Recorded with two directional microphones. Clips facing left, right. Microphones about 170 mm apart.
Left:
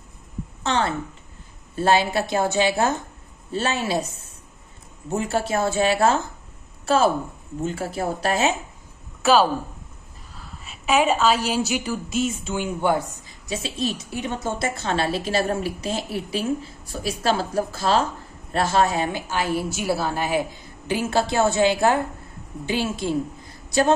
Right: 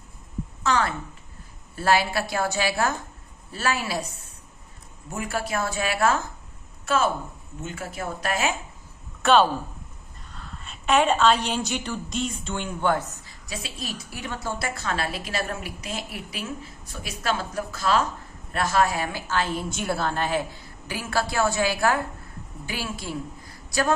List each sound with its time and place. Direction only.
0.7 s a woman's voice: 25° left (ahead or behind)
9.2 s a woman's voice: 5° left (ahead or behind)
13.5 s a woman's voice: 25° left (ahead or behind)